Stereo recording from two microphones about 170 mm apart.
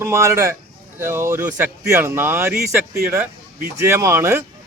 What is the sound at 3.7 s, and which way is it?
Speech, 15° right (ahead or behind).